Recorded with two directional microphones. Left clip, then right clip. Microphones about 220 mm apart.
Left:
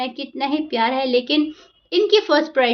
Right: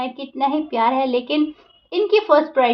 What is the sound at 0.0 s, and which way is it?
Child singing, 35° left (ahead or behind).